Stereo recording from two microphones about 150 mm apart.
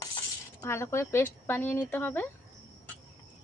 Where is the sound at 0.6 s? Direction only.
15° left (ahead or behind).